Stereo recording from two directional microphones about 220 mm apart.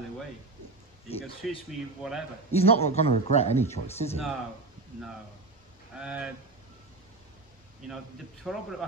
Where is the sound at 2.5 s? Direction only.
25° left (ahead or behind).